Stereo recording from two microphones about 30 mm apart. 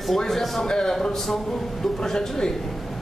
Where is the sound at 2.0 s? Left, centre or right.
Left.